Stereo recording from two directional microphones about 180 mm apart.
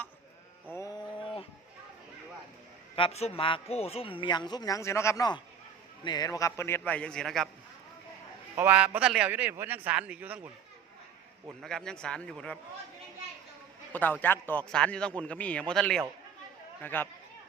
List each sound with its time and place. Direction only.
0.7 s sheep: 20° left (ahead or behind)
2.9 s a man's voice: 30° left (ahead or behind); by 7.5 s centre (ahead or behind)
8.5 s a man's voice: 10° right (ahead or behind)
11.6 s a man's voice: 5° left (ahead or behind)
13.9 s a man's voice: 10° left (ahead or behind)